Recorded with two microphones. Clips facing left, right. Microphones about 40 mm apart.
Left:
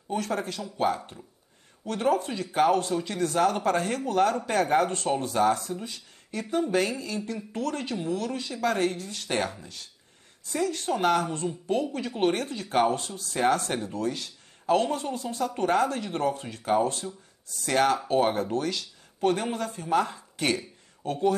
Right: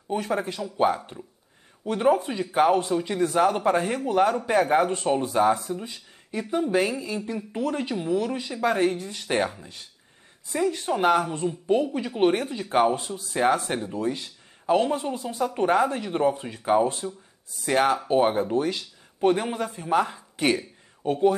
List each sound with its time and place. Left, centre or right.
0.1 s speech: centre